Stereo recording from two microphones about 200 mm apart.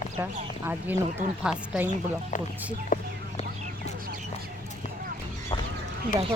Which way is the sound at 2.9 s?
40° left (ahead or behind).